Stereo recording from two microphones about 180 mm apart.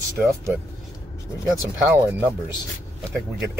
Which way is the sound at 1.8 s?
10° right (ahead or behind).